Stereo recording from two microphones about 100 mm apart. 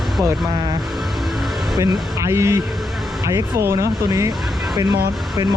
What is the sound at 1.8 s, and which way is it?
Speech, 30° right (ahead or behind).